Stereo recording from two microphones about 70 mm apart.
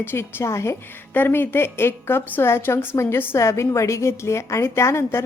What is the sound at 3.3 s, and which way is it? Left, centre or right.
A woman's voice, left.